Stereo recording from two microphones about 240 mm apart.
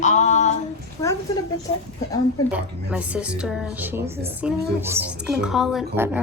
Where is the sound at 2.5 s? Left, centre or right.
Centre.